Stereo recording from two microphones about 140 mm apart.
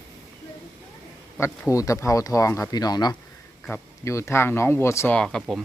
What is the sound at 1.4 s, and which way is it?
Speech, 25° left (ahead or behind).